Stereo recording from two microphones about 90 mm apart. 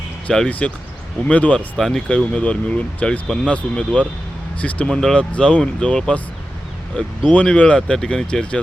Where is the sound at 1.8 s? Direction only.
5° left (ahead or behind).